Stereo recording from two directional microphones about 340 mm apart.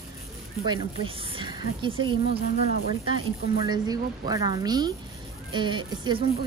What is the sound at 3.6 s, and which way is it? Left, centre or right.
Speech, centre.